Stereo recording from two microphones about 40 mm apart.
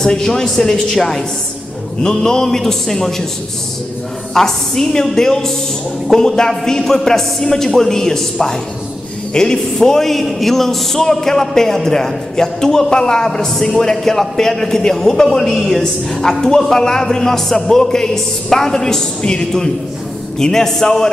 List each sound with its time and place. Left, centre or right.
0.0 s a man's voice: centre
4.3 s a man's voice: centre
6.8 s a man's voice: centre
15.8 s a man's voice: centre